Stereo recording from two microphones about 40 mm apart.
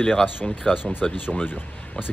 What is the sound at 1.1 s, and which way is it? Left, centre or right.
Speech, left.